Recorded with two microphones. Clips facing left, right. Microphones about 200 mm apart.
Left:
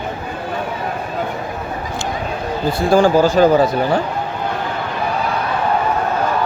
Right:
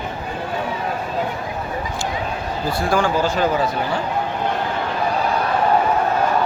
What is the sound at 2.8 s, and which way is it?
Speech, 30° left (ahead or behind).